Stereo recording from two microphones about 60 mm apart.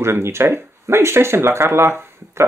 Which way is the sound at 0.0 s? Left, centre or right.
Right.